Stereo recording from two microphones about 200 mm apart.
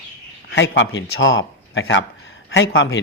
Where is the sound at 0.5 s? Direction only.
65° left (ahead or behind).